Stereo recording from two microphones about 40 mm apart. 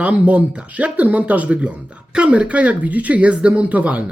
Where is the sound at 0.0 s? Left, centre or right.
Right.